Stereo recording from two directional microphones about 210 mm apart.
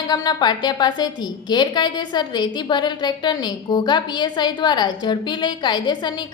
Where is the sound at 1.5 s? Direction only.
20° left (ahead or behind).